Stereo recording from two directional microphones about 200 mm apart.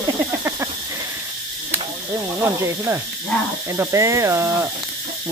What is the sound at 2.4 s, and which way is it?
Speech, 10° right (ahead or behind).